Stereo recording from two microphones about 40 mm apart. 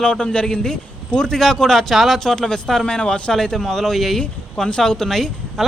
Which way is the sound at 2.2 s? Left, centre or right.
Centre.